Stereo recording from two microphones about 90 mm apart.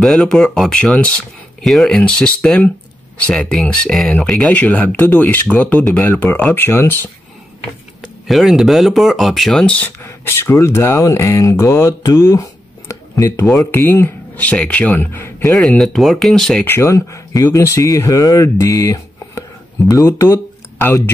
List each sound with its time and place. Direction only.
0.0 s speech: 5° left (ahead or behind); by 7.1 s 25° left (ahead or behind)
8.3 s speech: centre (ahead or behind)
10.0 s speech: 35° left (ahead or behind)
13.7 s speech: 25° left (ahead or behind)
15.8 s speech: centre (ahead or behind)
16.6 s speech: 25° left (ahead or behind)
16.9 s speech: 35° left (ahead or behind)